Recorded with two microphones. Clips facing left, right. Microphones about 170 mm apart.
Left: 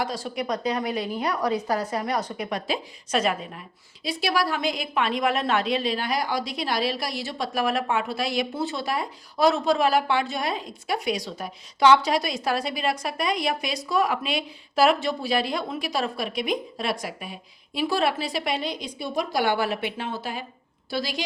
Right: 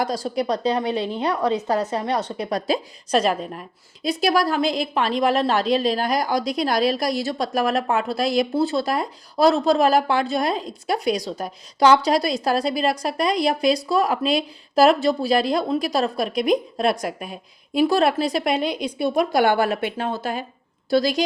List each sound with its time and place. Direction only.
0.0 s a woman's voice: 40° right (ahead or behind)